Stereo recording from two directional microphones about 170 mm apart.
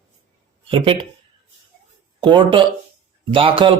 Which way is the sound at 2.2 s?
30° right (ahead or behind).